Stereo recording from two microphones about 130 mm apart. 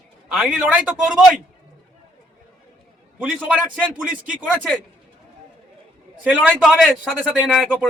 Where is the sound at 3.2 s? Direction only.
10° right (ahead or behind).